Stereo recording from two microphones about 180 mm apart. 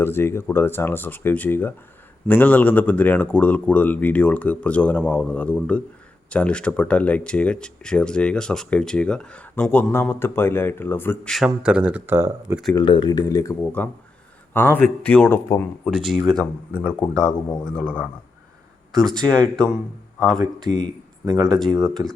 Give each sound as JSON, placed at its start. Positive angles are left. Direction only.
{"t": 0.0, "sound": "speech", "side_deg": 10}
{"t": 11.3, "sound": "speech", "side_deg": -5}
{"t": 12.7, "sound": "speech", "side_deg": 25}
{"t": 20.7, "sound": "speech", "side_deg": 45}
{"t": 21.4, "sound": "speech", "side_deg": 5}